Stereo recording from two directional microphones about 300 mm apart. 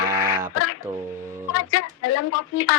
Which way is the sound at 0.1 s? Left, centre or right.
Right.